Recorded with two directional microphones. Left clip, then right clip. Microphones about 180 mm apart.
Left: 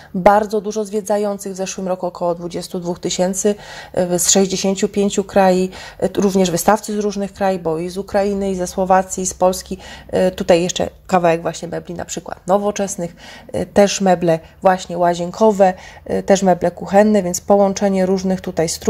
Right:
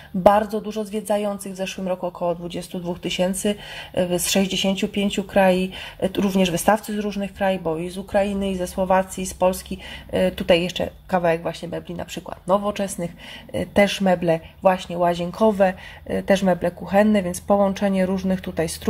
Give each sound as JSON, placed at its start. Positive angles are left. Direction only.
{"t": 0.3, "sound": "speech", "side_deg": 30}